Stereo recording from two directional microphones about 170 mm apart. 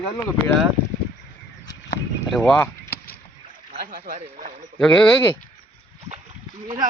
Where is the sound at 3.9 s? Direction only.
50° right (ahead or behind).